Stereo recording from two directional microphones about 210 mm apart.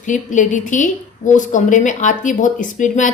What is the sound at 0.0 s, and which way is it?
Speech, 35° left (ahead or behind).